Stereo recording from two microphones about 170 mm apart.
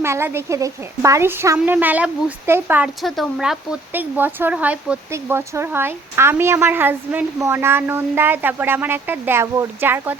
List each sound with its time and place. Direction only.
0.0 s speech: 15° right (ahead or behind)
3.0 s speech: centre (ahead or behind)